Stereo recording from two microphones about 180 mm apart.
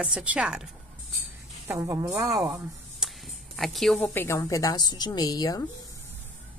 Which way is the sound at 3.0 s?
5° right (ahead or behind).